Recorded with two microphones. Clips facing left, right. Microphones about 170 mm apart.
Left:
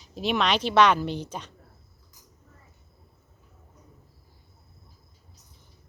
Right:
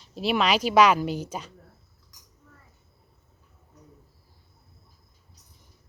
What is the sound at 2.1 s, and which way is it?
Dishes, 70° right (ahead or behind).